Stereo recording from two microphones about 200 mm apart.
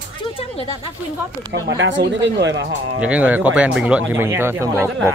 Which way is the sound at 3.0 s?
5° right (ahead or behind).